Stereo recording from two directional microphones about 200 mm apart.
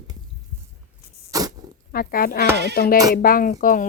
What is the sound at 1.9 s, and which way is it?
Speech, 45° left (ahead or behind).